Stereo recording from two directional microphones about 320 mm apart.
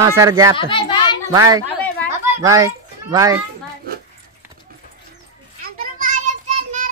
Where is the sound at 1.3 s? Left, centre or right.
Centre.